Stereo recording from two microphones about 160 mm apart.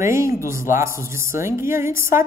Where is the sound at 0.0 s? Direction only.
15° right (ahead or behind).